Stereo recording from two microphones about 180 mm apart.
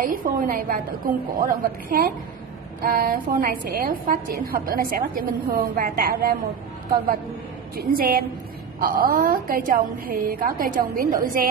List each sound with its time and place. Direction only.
0.0 s a woman's voice: 45° right (ahead or behind)
7.7 s a woman's voice: 55° right (ahead or behind)